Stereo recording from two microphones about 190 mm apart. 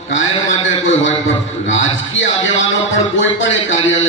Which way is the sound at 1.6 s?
80° left.